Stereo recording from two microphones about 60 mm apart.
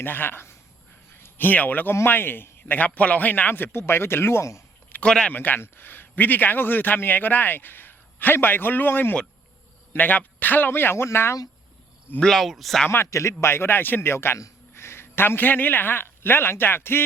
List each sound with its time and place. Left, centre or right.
0.0 s a man's voice: left
5.0 s speech: centre
5.3 s a man's voice: left
12.2 s speech: centre
13.1 s a man's voice: left